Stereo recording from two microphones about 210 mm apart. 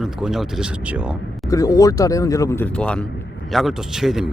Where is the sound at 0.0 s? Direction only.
Centre (ahead or behind).